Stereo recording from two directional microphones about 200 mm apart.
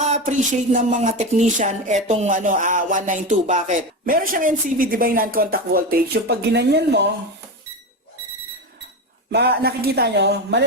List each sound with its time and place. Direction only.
0.0 s a sound: 35° right (ahead or behind)
2.0 s speech: 35° right (ahead or behind); by 7.1 s 55° right (ahead or behind)
9.3 s speech: 55° right (ahead or behind)